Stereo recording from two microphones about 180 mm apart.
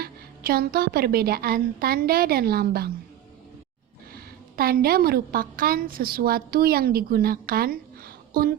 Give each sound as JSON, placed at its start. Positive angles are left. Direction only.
{"t": 0.0, "sound": "a woman's voice", "side_deg": -55}
{"t": 4.5, "sound": "a woman's voice", "side_deg": -55}